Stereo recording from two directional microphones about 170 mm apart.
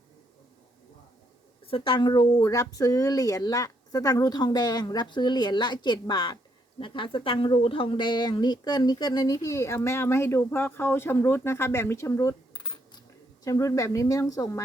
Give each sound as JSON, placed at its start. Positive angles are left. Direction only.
{"t": 1.6, "sound": "speech", "side_deg": 30}
{"t": 12.5, "sound": "coin", "side_deg": 25}
{"t": 13.4, "sound": "speech", "side_deg": 20}